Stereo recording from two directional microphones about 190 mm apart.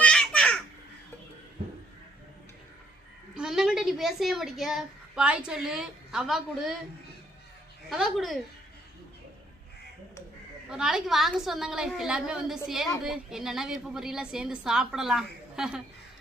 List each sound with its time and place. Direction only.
0.0 s babbling: 5° left (ahead or behind)
3.3 s a woman's voice: 5° right (ahead or behind)
7.9 s a woman's voice: centre (ahead or behind)
10.7 s a woman's voice: 5° right (ahead or behind)